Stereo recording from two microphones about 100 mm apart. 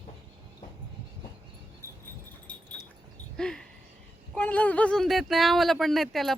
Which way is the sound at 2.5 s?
10° left (ahead or behind).